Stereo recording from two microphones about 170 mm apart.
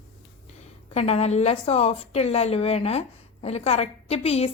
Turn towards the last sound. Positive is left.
turn(degrees=35)  # may be behind; listen again after turning